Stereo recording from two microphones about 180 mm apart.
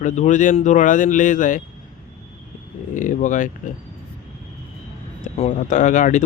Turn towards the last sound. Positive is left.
turn(degrees=45)  # may be behind; listen again after turning